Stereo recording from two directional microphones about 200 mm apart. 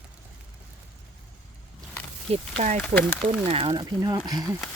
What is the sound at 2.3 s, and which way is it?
Speech, 35° right (ahead or behind).